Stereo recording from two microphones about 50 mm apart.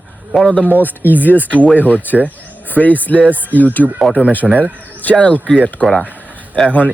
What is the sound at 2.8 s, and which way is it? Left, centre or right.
Speech, left.